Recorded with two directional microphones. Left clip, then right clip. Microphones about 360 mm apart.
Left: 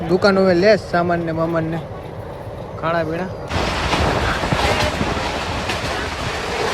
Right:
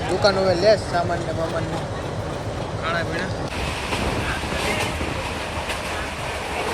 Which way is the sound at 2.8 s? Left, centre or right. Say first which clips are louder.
Left 5 dB; centre.